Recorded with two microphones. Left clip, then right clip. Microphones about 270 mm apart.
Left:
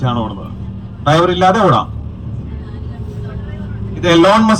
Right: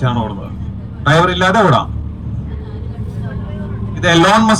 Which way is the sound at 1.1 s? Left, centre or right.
Centre.